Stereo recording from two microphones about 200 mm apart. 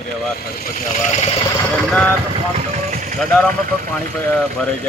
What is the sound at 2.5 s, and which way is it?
Vehicle, 40° right (ahead or behind).